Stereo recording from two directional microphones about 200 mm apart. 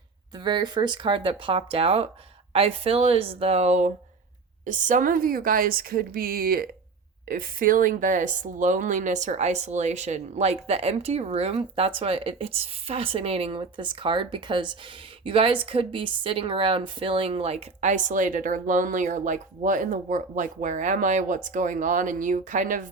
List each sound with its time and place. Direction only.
0.3 s a woman's voice: 20° right (ahead or behind); by 22.9 s 40° right (ahead or behind)